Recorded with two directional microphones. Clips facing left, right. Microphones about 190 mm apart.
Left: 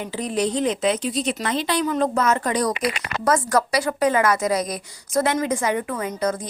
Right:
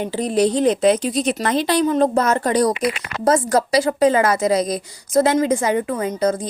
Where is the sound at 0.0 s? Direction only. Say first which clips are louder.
Right 6 dB; 30° right (ahead or behind).